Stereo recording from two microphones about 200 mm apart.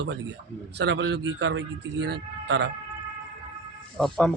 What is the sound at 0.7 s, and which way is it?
A man's voice, 65° right (ahead or behind).